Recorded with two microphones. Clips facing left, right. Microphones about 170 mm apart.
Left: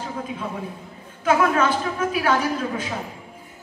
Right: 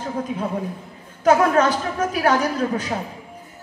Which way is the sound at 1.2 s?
40° right (ahead or behind).